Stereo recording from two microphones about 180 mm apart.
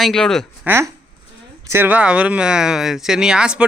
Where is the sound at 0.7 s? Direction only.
15° right (ahead or behind).